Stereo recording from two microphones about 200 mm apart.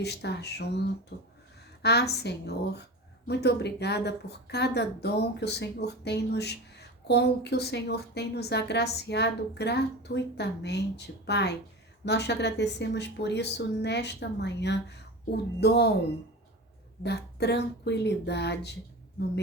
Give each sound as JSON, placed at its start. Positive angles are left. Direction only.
{"t": 0.0, "sound": "speech", "side_deg": 55}
{"t": 17.0, "sound": "speech", "side_deg": 55}
{"t": 19.2, "sound": "a sound", "side_deg": 55}